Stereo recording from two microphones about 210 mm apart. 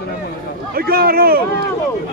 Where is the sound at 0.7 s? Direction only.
45° right (ahead or behind).